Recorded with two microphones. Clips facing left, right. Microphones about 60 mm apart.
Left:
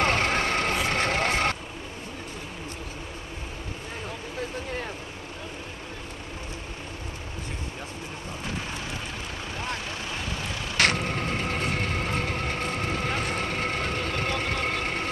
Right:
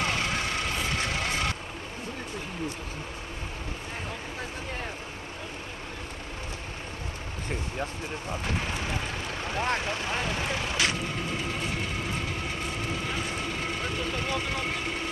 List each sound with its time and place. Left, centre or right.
0.0 s vehicle: left
9.6 s vehicle: right
10.8 s vehicle: left